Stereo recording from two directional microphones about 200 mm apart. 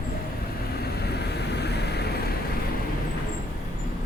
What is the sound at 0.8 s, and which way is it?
Vehicle, 55° left (ahead or behind).